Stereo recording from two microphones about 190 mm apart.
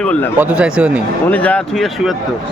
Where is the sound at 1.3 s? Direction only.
5° left (ahead or behind).